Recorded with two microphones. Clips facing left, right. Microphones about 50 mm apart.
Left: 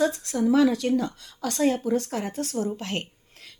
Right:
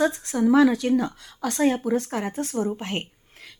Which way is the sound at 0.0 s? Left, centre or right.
Right.